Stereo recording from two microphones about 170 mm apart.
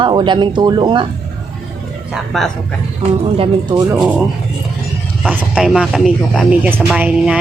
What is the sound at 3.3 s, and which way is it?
Speech, 30° right (ahead or behind).